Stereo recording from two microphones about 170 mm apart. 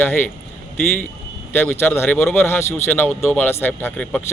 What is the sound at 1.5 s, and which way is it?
A man's voice, 15° left (ahead or behind).